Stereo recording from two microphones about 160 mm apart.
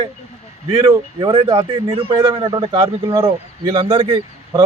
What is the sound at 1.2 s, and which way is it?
A man's voice, 30° right (ahead or behind).